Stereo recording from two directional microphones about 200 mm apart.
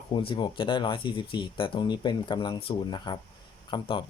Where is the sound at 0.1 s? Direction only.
25° left (ahead or behind).